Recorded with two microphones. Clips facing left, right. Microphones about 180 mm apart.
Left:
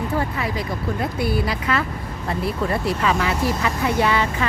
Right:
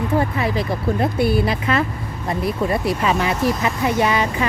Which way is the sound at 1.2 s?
25° right (ahead or behind).